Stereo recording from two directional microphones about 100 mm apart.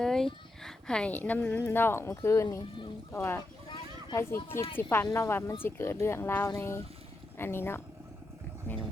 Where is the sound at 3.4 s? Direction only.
50° left (ahead or behind).